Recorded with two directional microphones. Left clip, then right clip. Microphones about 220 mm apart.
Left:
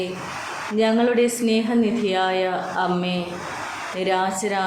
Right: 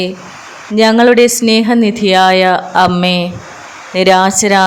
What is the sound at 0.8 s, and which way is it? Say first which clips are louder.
Speech: right 12 dB; 55° right (ahead or behind).